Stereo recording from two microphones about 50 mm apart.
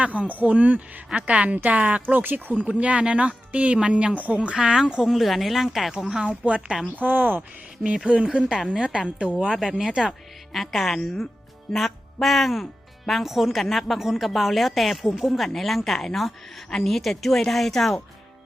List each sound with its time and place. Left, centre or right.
0.0 s speech: right
2.1 s speech: right; by 4.8 s centre
5.0 s a woman's voice: centre
6.1 s a woman's voice: centre
6.8 s speech: right
8.0 s a woman's voice: centre
10.5 s a woman's voice: centre